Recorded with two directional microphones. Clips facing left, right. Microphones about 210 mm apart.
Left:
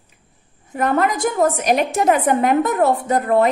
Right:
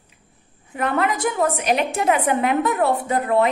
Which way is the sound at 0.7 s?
45° left (ahead or behind).